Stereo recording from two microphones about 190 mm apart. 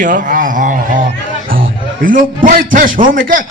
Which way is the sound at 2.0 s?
45° right (ahead or behind).